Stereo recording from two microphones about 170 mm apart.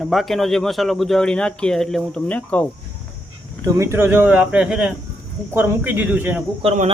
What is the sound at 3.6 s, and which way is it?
Speech, 15° right (ahead or behind).